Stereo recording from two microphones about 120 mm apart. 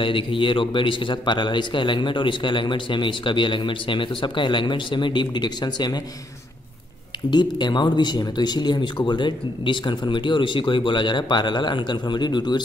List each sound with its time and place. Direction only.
0.0 s a man's voice: 45° left (ahead or behind)
7.2 s speech: 40° left (ahead or behind)